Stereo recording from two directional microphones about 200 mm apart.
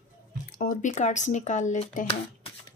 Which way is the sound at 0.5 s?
45° left (ahead or behind).